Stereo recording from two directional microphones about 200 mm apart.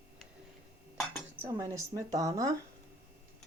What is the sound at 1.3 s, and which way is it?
A woman's voice, 15° right (ahead or behind).